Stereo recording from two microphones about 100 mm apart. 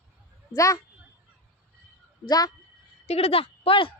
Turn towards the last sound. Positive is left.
turn(degrees=65)  # may be behind; listen again after turning